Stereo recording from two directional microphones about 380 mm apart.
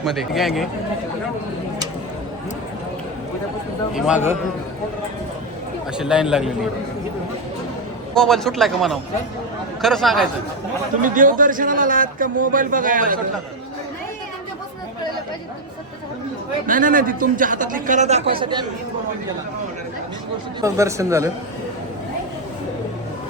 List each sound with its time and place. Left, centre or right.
0.0 s a man's voice: centre
3.9 s a man's voice: centre
6.0 s a man's voice: centre
8.1 s a man's voice: centre
11.0 s speech: right
16.6 s speech: right
20.6 s speech: centre